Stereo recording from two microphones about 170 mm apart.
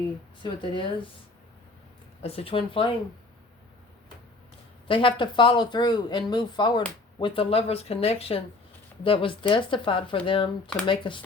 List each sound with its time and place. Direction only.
0.4 s speech: 30° left (ahead or behind)
2.2 s speech: 35° left (ahead or behind)
4.9 s speech: 30° left (ahead or behind)